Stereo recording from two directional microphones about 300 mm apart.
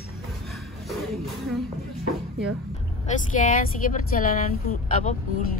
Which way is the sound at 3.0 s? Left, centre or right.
Left.